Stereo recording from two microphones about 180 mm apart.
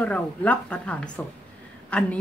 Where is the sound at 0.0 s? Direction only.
10° left (ahead or behind).